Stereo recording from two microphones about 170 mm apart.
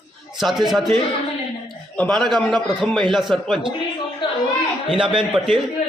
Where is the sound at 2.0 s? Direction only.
5° left (ahead or behind).